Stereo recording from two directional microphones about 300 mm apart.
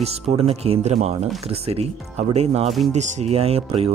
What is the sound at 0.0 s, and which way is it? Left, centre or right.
Speech, centre.